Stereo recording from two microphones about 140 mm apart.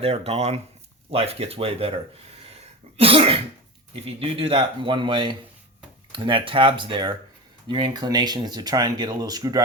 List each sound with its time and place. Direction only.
0.0 s speech: 45° right (ahead or behind)
3.0 s speech: 45° right (ahead or behind); by 9.6 s 25° right (ahead or behind)